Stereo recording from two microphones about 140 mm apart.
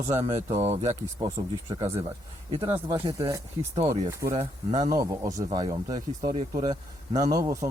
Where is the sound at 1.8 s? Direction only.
45° right (ahead or behind).